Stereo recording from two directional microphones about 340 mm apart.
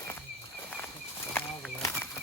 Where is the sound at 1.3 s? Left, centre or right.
Centre.